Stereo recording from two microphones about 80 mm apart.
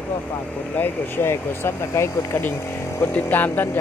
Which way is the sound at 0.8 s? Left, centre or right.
Left.